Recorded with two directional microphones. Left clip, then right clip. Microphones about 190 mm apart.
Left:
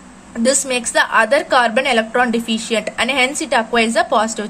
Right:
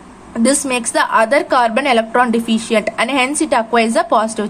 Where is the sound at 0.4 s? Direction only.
5° right (ahead or behind).